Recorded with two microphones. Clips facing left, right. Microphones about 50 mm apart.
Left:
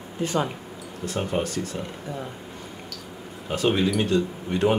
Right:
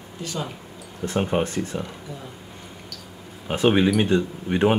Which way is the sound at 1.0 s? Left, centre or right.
Right.